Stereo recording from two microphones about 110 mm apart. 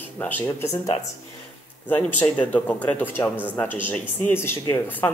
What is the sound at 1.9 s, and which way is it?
A man's voice, 15° left (ahead or behind).